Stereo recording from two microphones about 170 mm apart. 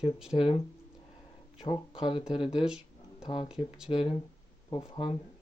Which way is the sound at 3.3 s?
30° left (ahead or behind).